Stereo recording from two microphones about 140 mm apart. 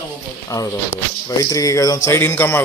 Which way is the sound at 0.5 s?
25° left (ahead or behind).